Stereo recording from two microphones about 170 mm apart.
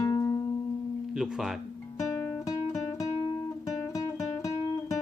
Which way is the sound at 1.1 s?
Centre (ahead or behind).